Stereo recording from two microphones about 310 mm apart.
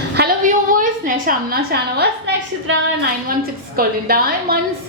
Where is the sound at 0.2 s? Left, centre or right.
Right.